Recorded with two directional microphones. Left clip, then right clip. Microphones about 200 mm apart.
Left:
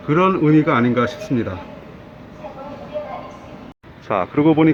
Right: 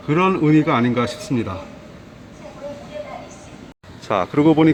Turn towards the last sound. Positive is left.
turn(degrees=-5)  # may be behind; listen again after turning